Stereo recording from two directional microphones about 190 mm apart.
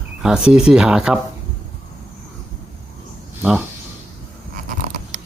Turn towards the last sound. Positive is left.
turn(degrees=-45)  # may be behind; listen again after turning